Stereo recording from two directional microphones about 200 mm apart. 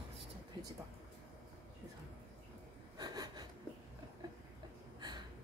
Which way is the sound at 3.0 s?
20° right (ahead or behind).